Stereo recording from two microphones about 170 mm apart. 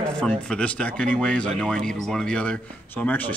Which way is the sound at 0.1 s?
5° left (ahead or behind).